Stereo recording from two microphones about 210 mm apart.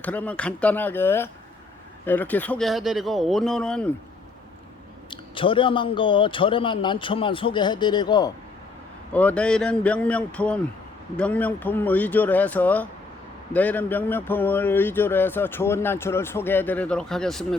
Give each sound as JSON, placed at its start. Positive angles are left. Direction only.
{"t": 0.0, "sound": "speech", "side_deg": 5}
{"t": 5.1, "sound": "a man's voice", "side_deg": 25}
{"t": 9.1, "sound": "speech", "side_deg": 5}